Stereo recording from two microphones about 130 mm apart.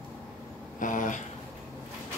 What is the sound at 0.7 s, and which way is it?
Speech, 85° left.